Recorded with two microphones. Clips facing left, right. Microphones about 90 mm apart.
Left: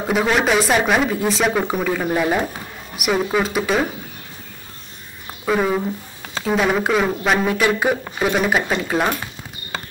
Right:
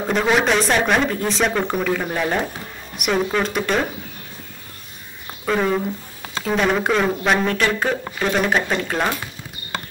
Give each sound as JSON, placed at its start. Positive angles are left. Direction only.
{"t": 0.1, "sound": "speech", "side_deg": 5}
{"t": 5.4, "sound": "speech", "side_deg": 5}